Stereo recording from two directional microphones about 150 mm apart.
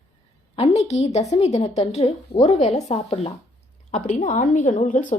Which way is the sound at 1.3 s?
45° left (ahead or behind).